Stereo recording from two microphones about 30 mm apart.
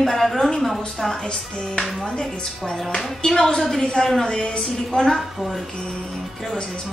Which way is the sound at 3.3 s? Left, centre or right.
Centre.